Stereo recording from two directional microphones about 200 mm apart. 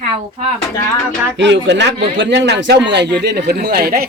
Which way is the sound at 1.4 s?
60° right (ahead or behind).